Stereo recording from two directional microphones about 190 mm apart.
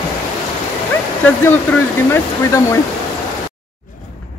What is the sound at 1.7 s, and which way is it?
Speech, 5° left (ahead or behind).